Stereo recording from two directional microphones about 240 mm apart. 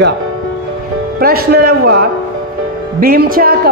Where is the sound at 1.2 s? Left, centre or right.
Right.